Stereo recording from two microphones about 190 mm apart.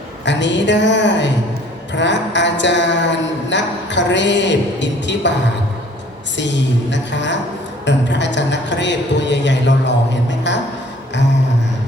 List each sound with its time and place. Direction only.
0.3 s a man's voice: 70° left (ahead or behind)
6.3 s a man's voice: 70° left (ahead or behind)